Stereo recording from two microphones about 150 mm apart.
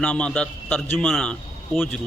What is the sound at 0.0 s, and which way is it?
A man's voice, 5° left (ahead or behind).